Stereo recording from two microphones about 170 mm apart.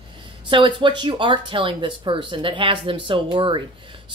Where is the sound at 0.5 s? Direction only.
30° right (ahead or behind).